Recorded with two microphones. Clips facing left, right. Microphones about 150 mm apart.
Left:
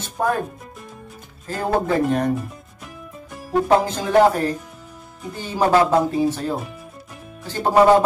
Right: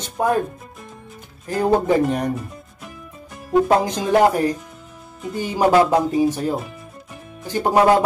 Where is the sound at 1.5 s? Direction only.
15° right (ahead or behind).